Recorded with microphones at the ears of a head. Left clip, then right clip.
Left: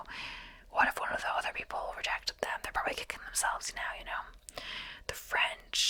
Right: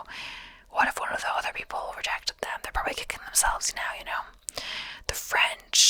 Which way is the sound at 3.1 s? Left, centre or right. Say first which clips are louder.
Right 7 dB; right.